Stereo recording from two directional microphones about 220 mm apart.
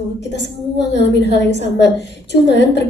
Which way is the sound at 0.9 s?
50° left (ahead or behind).